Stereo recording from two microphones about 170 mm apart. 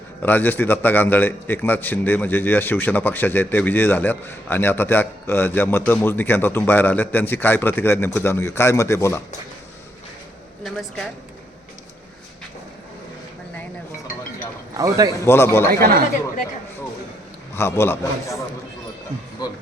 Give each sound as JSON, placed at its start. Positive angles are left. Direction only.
{"t": 0.2, "sound": "a man's voice", "side_deg": 10}
{"t": 10.6, "sound": "a woman's voice", "side_deg": 0}
{"t": 14.7, "sound": "speech", "side_deg": -20}
{"t": 15.2, "sound": "a man's voice", "side_deg": 15}
{"t": 15.8, "sound": "speech", "side_deg": -60}
{"t": 17.5, "sound": "a man's voice", "side_deg": 15}